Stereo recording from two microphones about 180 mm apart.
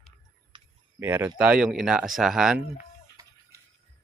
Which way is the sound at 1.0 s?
10° right (ahead or behind).